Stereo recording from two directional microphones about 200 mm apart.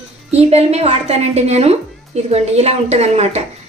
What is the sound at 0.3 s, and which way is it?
A woman's voice, 30° right (ahead or behind).